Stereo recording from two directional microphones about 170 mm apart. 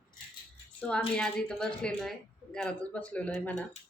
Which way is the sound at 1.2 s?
5° left (ahead or behind).